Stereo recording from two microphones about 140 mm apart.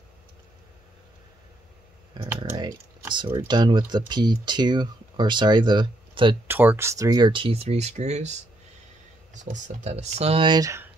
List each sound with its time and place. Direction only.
3.2 s speech: 35° right (ahead or behind)
6.4 s speech: 15° right (ahead or behind)